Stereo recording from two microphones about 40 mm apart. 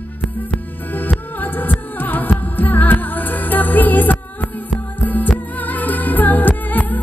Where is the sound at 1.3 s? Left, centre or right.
Left.